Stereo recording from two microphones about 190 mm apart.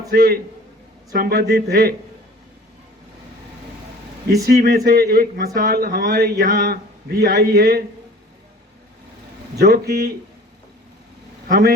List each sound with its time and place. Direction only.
0.1 s a man's voice: 50° right (ahead or behind)
4.4 s speech: 55° right (ahead or behind)
9.6 s speech: 55° right (ahead or behind)
11.4 s speech: 45° right (ahead or behind)